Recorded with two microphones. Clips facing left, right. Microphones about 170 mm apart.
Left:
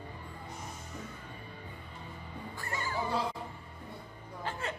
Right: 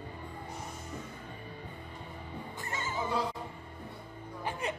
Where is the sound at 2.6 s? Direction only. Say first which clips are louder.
Left 1 dB; 20° right (ahead or behind).